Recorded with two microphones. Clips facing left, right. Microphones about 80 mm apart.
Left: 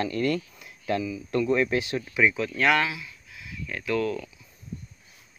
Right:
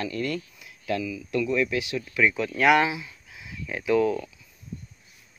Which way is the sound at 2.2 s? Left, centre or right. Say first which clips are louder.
Right 1 dB; centre.